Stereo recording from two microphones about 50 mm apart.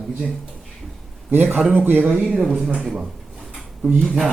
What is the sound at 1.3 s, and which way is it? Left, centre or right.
Speech, right.